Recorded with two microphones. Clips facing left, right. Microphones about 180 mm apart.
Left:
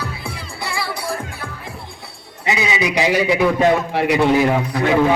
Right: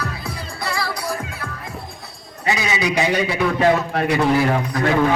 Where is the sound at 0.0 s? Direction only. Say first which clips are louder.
Even; 30° left (ahead or behind).